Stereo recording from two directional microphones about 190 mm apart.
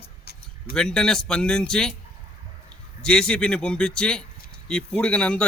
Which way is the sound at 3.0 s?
5° left (ahead or behind).